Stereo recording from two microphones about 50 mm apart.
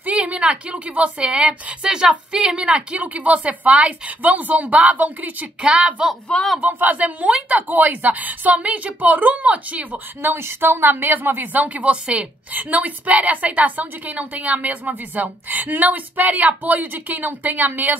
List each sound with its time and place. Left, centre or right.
0.0 s a woman's voice: right
5.6 s a woman's voice: right
6.7 s a woman's voice: right
10.2 s speech: right
11.5 s a woman's voice: right